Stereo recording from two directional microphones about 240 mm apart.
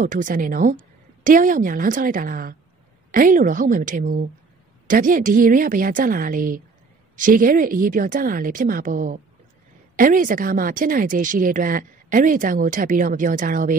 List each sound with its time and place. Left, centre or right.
0.0 s speech: right